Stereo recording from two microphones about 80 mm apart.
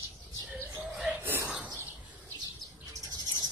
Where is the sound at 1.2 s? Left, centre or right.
Right.